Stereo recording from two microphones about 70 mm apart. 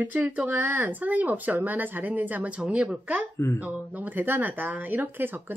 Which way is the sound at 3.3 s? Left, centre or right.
Left.